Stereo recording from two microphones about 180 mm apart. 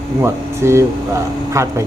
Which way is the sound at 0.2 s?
15° right (ahead or behind).